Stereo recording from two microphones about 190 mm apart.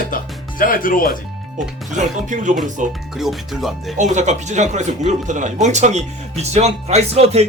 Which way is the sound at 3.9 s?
40° right (ahead or behind).